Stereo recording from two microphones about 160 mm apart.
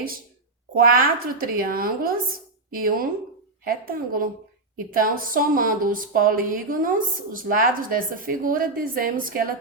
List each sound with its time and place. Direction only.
0.8 s speech: 65° right (ahead or behind)